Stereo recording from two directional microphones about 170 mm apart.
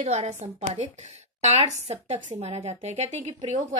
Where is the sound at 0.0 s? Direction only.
40° right (ahead or behind).